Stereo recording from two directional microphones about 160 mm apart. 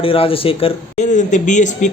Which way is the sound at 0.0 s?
35° left (ahead or behind).